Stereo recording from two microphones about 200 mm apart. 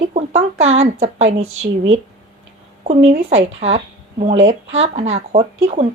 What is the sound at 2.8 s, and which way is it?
Speech, 35° right (ahead or behind).